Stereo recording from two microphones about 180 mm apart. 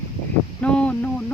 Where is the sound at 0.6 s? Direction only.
5° left (ahead or behind).